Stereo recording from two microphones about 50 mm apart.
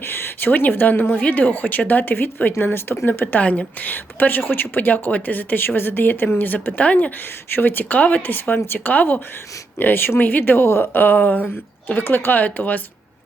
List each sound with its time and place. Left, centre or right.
0.1 s a woman's voice: left
6.7 s speech: left
7.5 s speech: left
9.7 s speech: left